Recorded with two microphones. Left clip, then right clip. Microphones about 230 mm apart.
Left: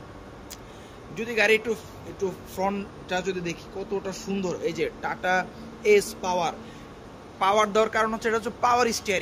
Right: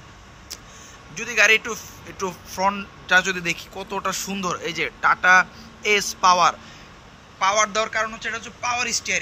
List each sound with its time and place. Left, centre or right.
1.1 s a man's voice: centre